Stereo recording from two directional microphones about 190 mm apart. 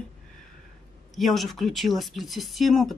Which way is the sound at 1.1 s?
Centre (ahead or behind).